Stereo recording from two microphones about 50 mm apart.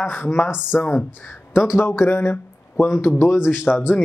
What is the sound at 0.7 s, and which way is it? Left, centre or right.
Speech, left.